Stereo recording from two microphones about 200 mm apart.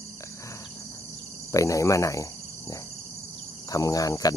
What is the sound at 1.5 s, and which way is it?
Cricket, 15° left (ahead or behind).